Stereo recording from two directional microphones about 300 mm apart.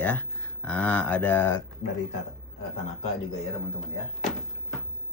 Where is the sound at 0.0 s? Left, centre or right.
Centre.